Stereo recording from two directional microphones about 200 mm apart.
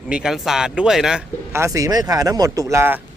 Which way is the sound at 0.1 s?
5° right (ahead or behind).